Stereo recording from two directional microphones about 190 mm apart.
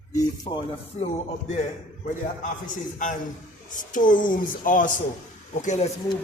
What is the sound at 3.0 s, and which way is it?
Speech, 40° left (ahead or behind).